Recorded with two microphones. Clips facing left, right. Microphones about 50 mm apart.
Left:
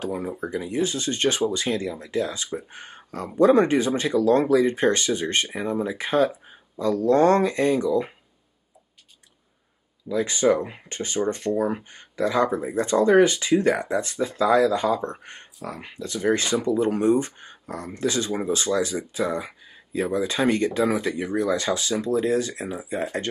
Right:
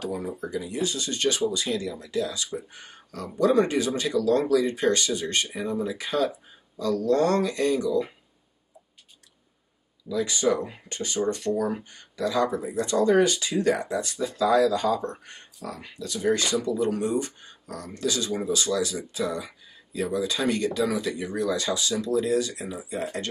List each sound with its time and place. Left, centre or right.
0.0 s speech: left
10.0 s speech: left